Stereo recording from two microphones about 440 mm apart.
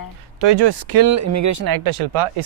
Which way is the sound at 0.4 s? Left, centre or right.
Right.